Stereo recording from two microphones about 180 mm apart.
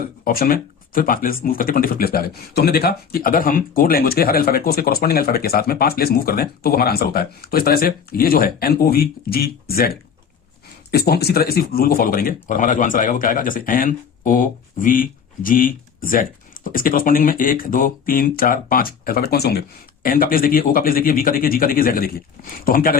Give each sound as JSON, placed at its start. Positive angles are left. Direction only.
{"t": 0.3, "sound": "speech", "side_deg": 55}